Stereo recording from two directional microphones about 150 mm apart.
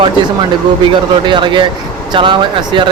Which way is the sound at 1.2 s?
30° right (ahead or behind).